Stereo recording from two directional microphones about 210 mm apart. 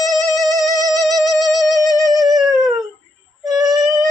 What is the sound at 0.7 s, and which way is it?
Music, 15° right (ahead or behind).